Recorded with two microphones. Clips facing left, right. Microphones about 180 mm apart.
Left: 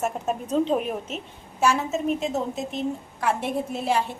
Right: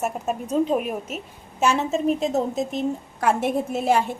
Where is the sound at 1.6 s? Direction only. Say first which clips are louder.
Right 2 dB; 25° right (ahead or behind).